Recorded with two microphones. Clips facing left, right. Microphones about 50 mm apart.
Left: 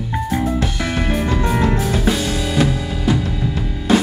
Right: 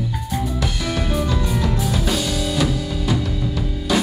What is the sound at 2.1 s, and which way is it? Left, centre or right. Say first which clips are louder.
Drum kit: left 3 dB; left.